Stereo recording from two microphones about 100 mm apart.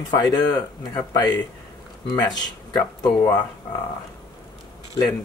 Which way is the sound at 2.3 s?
45° left (ahead or behind).